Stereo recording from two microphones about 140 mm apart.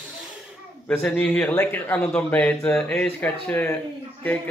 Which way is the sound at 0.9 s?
10° left (ahead or behind).